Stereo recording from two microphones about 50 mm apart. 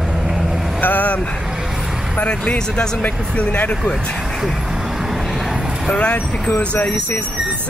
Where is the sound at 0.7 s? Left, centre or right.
Left.